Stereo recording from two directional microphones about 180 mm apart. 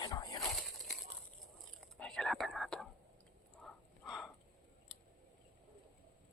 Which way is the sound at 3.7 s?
Centre (ahead or behind).